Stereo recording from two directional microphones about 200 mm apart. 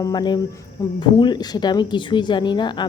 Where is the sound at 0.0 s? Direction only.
20° left (ahead or behind).